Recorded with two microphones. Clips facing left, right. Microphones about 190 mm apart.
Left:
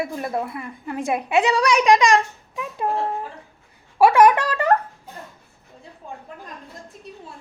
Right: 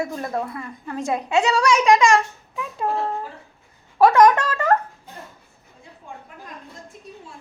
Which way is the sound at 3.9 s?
10° left (ahead or behind).